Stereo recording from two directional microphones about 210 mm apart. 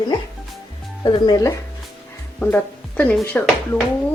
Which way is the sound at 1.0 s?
20° left (ahead or behind).